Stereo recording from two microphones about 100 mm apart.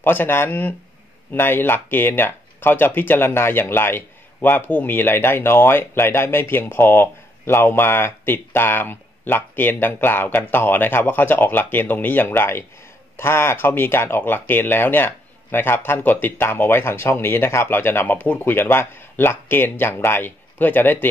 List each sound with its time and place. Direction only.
0.0 s speech: 20° left (ahead or behind)